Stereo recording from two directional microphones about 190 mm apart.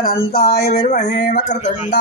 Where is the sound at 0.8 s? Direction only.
40° left (ahead or behind).